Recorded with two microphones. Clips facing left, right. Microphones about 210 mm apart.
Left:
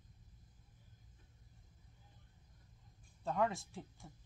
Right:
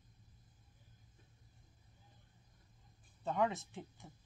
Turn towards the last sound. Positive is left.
turn(degrees=0)  # may be behind; listen again after turning